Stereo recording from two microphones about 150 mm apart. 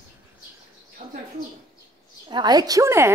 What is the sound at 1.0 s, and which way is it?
Bird, 55° right (ahead or behind).